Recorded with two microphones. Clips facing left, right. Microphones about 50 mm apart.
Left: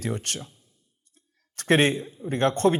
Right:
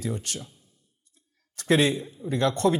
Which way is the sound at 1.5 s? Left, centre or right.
Left.